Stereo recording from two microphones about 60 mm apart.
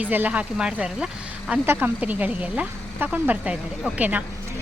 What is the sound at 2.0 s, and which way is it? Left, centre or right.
A woman's voice, right.